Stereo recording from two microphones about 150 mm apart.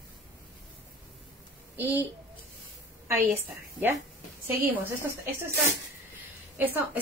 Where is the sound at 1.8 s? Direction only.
10° right (ahead or behind).